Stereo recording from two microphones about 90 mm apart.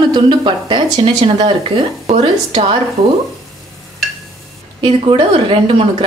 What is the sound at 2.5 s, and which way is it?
Speech, 70° right (ahead or behind).